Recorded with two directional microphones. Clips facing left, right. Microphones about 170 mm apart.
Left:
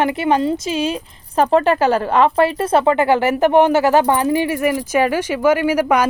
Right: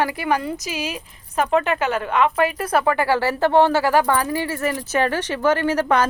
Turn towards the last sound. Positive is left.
turn(degrees=10)  # may be behind; listen again after turning